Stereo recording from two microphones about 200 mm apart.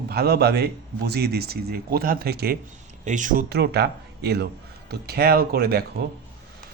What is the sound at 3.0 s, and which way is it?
Speech, 40° right (ahead or behind).